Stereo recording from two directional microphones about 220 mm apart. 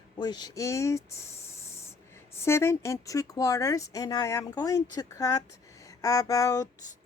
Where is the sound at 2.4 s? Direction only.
10° left (ahead or behind).